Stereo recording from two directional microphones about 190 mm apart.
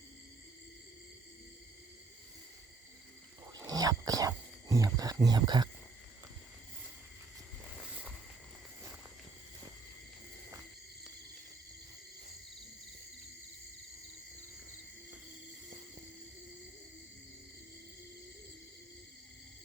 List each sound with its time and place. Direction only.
3.5 s speech: 20° right (ahead or behind)